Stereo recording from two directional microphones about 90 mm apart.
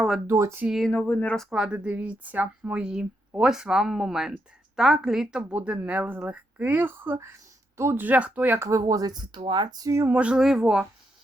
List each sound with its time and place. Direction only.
0.3 s speech: 30° right (ahead or behind)
0.9 s speech: 15° left (ahead or behind)
1.5 s speech: 10° right (ahead or behind); by 8.0 s 30° right (ahead or behind)
8.0 s speech: 20° right (ahead or behind)
8.6 s speech: 40° right (ahead or behind)
10.1 s speech: 15° right (ahead or behind)